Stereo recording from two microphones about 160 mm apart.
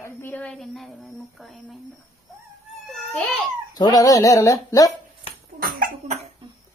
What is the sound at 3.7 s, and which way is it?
Speech, 25° left (ahead or behind).